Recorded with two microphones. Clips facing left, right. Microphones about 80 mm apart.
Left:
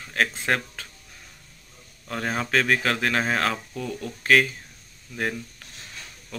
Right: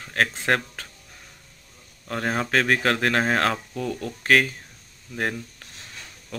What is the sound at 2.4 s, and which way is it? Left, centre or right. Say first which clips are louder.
Speech: even; right.